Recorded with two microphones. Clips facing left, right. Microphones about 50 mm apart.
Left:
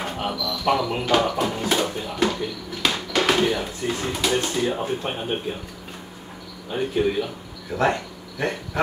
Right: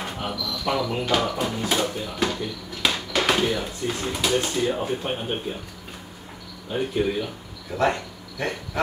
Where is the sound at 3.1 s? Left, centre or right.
Centre.